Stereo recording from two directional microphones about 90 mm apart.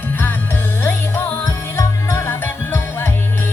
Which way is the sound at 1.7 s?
30° left (ahead or behind).